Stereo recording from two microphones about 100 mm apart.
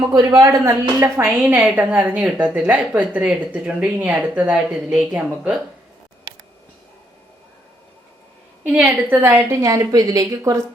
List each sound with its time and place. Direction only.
0.1 s a woman's voice: 40° right (ahead or behind); by 5.5 s 15° right (ahead or behind)
9.0 s a woman's voice: 20° right (ahead or behind)
9.4 s a woman's voice: 30° right (ahead or behind)